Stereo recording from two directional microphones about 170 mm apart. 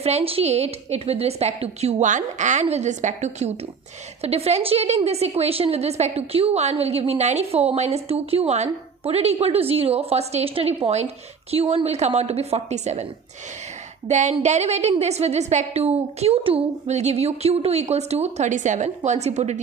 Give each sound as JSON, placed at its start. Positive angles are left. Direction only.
{"t": 0.0, "sound": "a woman's voice", "side_deg": -35}
{"t": 14.1, "sound": "a woman's voice", "side_deg": -45}